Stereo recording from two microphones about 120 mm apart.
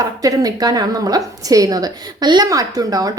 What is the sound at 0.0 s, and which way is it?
A woman's voice, 30° right (ahead or behind).